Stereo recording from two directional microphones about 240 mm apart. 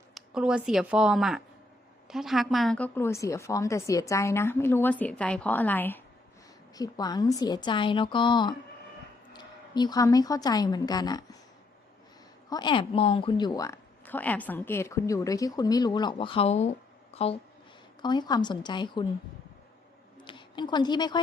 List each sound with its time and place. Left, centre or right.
0.1 s a woman's voice: centre
12.5 s speech: centre
20.2 s a woman's voice: centre